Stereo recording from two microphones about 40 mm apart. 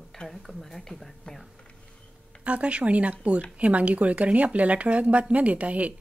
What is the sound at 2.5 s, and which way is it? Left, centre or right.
Speech, right.